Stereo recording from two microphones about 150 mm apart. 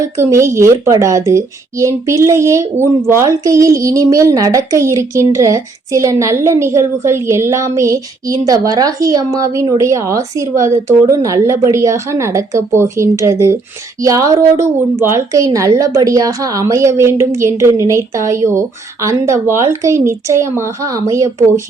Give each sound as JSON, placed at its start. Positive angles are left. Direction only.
{"t": 0.2, "sound": "a woman's voice", "side_deg": -20}